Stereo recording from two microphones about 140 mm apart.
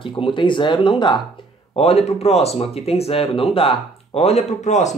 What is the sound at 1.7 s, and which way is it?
Speech, 50° left (ahead or behind).